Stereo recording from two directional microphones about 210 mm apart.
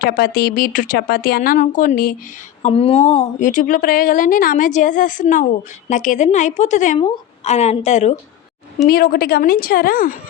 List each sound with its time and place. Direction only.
0.0 s speech: 45° left (ahead or behind)
2.6 s a woman's voice: 30° left (ahead or behind)
8.9 s speech: 45° left (ahead or behind)